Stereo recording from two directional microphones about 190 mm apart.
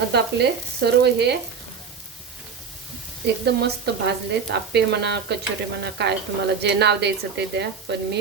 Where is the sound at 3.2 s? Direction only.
60° right (ahead or behind).